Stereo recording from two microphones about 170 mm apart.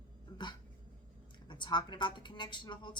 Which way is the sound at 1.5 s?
25° left (ahead or behind).